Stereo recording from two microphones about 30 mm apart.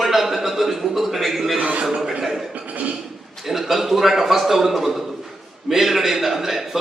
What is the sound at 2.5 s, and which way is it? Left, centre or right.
Cough, right.